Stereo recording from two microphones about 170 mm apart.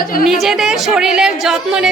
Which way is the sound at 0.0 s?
60° left (ahead or behind).